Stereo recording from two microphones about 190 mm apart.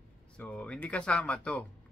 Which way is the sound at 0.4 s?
5° left (ahead or behind).